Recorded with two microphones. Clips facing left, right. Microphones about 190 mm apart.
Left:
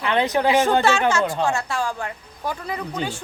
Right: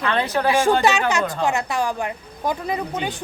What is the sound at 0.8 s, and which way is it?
Speech, 15° right (ahead or behind).